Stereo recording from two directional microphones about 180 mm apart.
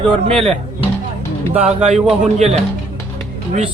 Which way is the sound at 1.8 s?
35° right (ahead or behind).